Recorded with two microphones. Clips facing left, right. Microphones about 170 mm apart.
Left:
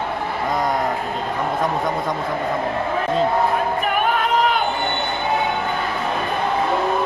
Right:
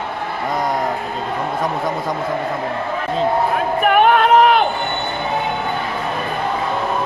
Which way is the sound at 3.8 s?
70° right (ahead or behind).